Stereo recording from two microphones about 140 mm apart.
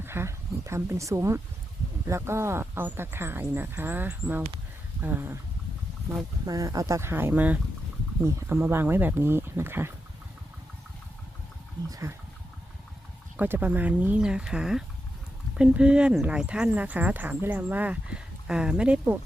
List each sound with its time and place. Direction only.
0.0 s speech: 15° right (ahead or behind)
6.4 s speech: 25° right (ahead or behind)
11.9 s speech: 20° right (ahead or behind)
13.3 s speech: 15° right (ahead or behind)